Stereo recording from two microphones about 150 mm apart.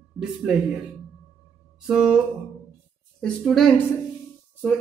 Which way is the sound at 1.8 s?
5° right (ahead or behind).